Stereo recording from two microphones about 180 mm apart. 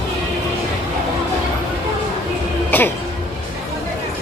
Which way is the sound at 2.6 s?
10° left (ahead or behind).